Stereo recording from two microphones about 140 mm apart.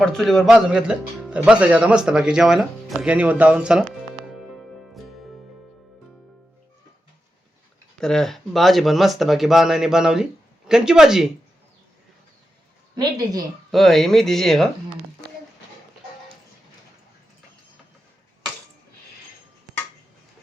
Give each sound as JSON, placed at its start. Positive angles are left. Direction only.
{"t": 0.0, "sound": "speech", "side_deg": 0}
{"t": 4.3, "sound": "music", "side_deg": 0}
{"t": 7.9, "sound": "speech", "side_deg": 5}
{"t": 13.0, "sound": "speech", "side_deg": -30}
{"t": 13.7, "sound": "speech", "side_deg": 0}